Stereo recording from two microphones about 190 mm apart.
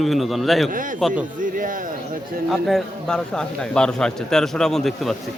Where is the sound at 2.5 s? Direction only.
Centre (ahead or behind).